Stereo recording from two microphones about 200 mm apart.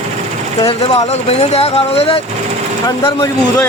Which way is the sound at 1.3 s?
30° left (ahead or behind).